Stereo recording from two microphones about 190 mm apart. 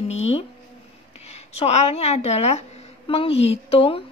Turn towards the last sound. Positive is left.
turn(degrees=30)  # may be behind; listen again after turning